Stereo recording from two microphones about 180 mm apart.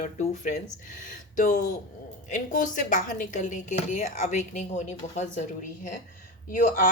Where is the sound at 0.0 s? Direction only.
40° left (ahead or behind).